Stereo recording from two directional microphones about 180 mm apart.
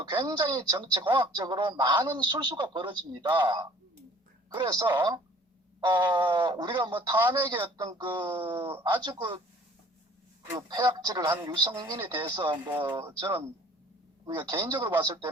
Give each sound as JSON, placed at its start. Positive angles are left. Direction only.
{"t": 0.0, "sound": "speech", "side_deg": -25}
{"t": 10.5, "sound": "speech", "side_deg": -25}